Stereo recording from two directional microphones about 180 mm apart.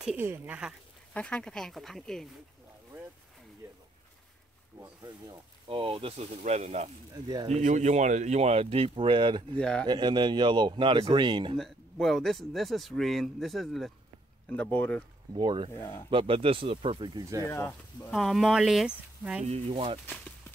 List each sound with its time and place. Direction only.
0.0 s speech: centre (ahead or behind)
1.1 s speech: 5° left (ahead or behind)
5.0 s speech: 25° right (ahead or behind)
9.6 s speech: 5° left (ahead or behind)
9.8 s a man's voice: 25° right (ahead or behind)
11.5 s speech: centre (ahead or behind)
15.3 s a man's voice: 25° right (ahead or behind)
15.8 s speech: 15° left (ahead or behind)
16.1 s a man's voice: 30° right (ahead or behind)
17.5 s speech: 15° left (ahead or behind)
18.1 s speech: centre (ahead or behind)
19.4 s speech: 35° right (ahead or behind)